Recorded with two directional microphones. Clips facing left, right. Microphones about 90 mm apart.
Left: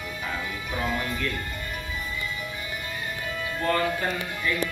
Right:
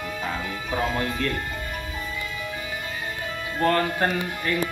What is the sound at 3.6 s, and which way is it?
Speech, 55° right (ahead or behind).